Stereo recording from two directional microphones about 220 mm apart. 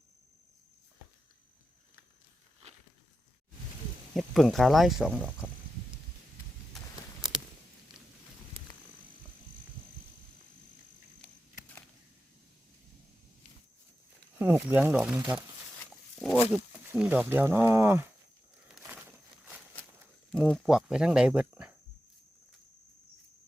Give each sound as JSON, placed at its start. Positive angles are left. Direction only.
{"t": 2.6, "sound": "a sound", "side_deg": -30}
{"t": 4.1, "sound": "speech", "side_deg": 0}
{"t": 14.3, "sound": "speech", "side_deg": -10}
{"t": 16.5, "sound": "speech", "side_deg": -5}
{"t": 18.8, "sound": "a sound", "side_deg": -10}
{"t": 20.3, "sound": "speech", "side_deg": 5}